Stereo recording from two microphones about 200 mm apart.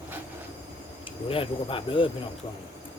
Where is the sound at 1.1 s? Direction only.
25° left (ahead or behind).